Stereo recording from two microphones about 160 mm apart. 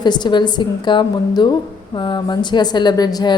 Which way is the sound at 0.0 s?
25° left (ahead or behind).